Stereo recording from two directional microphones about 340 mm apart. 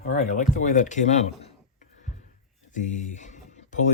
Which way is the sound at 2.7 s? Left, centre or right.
Left.